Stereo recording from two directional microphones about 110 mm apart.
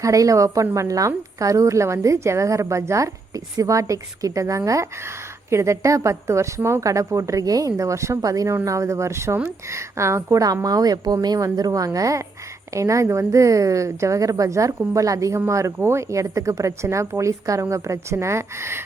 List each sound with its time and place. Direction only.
0.0 s a woman's voice: 30° right (ahead or behind)